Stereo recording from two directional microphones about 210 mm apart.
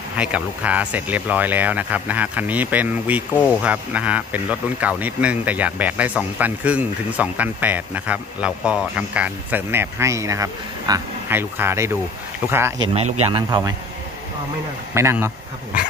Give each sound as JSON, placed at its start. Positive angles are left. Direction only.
{"t": 0.2, "sound": "speech", "side_deg": -5}
{"t": 13.2, "sound": "speech", "side_deg": -25}
{"t": 15.0, "sound": "speech", "side_deg": -10}